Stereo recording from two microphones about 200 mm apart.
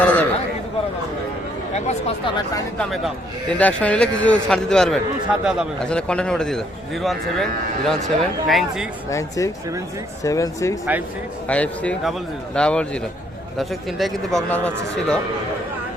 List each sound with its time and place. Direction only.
0.0 s a sound: 5° left (ahead or behind)
1.7 s speech: 30° left (ahead or behind)
2.7 s speech: centre (ahead or behind)
9.0 s speech: 15° left (ahead or behind)